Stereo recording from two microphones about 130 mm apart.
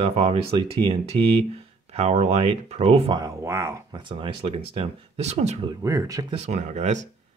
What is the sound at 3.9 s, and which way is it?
Speech, 40° right (ahead or behind).